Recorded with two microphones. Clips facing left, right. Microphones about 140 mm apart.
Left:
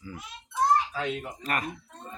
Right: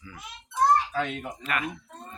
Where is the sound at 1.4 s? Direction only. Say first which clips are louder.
Even; 40° left (ahead or behind).